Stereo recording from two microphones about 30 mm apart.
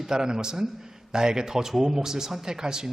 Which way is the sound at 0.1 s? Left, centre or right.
Right.